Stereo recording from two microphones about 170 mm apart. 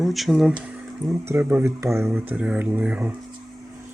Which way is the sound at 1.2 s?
15° right (ahead or behind).